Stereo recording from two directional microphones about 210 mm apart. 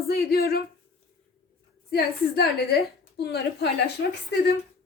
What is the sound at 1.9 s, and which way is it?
A woman's voice, 50° left (ahead or behind).